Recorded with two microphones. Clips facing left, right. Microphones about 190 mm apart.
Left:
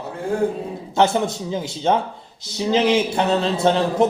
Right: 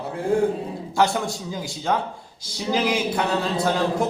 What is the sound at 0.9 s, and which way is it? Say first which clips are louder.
Speech: left 4 dB; 25° left (ahead or behind).